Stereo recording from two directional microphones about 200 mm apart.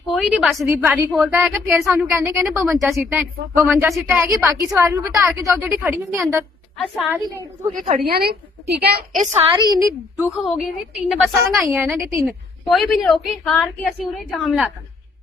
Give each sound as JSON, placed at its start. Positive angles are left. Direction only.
{"t": 0.1, "sound": "a woman's voice", "side_deg": 0}
{"t": 0.6, "sound": "a woman's voice", "side_deg": -15}
{"t": 2.5, "sound": "a woman's voice", "side_deg": 0}
{"t": 4.2, "sound": "a woman's voice", "side_deg": -15}
{"t": 7.7, "sound": "a woman's voice", "side_deg": -40}
{"t": 9.6, "sound": "a woman's voice", "side_deg": -20}
{"t": 10.3, "sound": "a woman's voice", "side_deg": 0}
{"t": 12.2, "sound": "a woman's voice", "side_deg": 0}